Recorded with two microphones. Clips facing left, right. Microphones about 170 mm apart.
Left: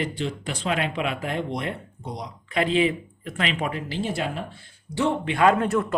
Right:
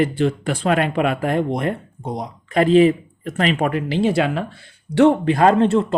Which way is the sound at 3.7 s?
70° right (ahead or behind).